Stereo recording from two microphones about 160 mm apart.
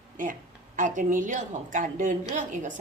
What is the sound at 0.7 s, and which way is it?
A woman's voice, 55° right (ahead or behind).